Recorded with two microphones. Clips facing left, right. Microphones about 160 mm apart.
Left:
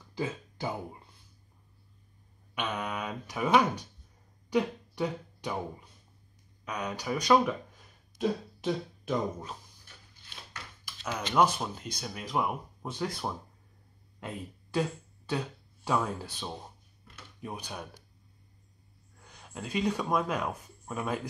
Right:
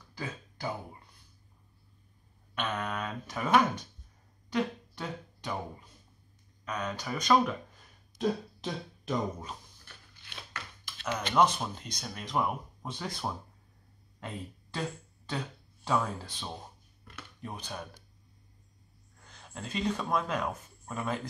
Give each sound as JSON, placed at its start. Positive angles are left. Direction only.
{"t": 0.1, "sound": "throat clearing", "side_deg": 25}
{"t": 2.5, "sound": "a sound", "side_deg": 10}
{"t": 6.6, "sound": "speech", "side_deg": 10}
{"t": 10.2, "sound": "scissors", "side_deg": -70}
{"t": 11.3, "sound": "speech", "side_deg": 5}
{"t": 19.2, "sound": "speech", "side_deg": 10}